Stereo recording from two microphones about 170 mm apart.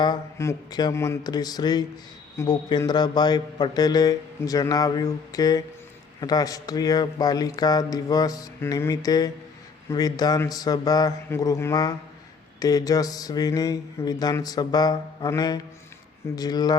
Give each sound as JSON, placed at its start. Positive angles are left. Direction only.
{"t": 0.0, "sound": "speech", "side_deg": 20}